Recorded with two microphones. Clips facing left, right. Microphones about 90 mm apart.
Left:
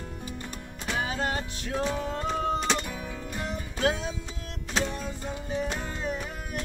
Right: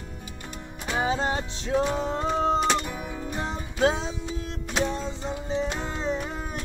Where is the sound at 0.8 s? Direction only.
25° right (ahead or behind).